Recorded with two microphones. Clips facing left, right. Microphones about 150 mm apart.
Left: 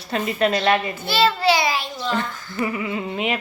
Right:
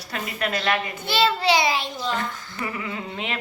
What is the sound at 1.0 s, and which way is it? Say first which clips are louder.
Speech: left 3 dB; 20° right (ahead or behind).